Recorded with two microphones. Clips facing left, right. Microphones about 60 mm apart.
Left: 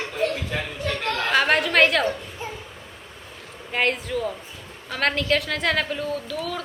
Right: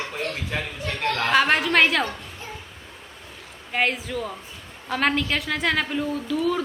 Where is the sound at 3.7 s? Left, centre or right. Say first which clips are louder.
Left 1 dB; centre.